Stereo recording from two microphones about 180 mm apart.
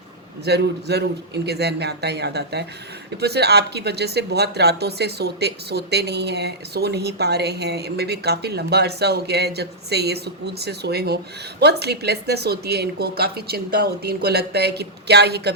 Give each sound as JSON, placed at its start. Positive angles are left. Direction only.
{"t": 0.4, "sound": "speech", "side_deg": -65}